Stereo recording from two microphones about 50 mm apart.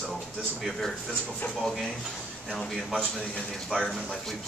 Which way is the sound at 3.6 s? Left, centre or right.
Centre.